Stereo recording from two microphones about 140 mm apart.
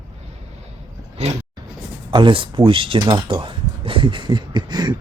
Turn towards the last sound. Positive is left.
turn(degrees=-30)  # may be behind; listen again after turning